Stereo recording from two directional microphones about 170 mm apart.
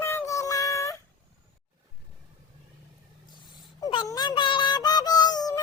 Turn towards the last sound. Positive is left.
turn(degrees=25)  # may be behind; listen again after turning